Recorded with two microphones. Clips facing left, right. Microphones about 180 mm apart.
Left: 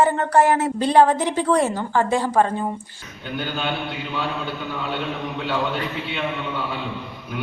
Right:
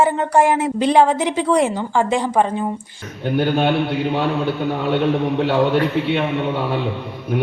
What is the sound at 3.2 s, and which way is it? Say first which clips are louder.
A man's voice: right 9 dB; 65° right (ahead or behind).